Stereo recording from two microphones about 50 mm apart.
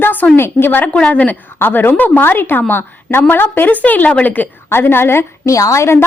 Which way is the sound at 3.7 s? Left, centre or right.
Left.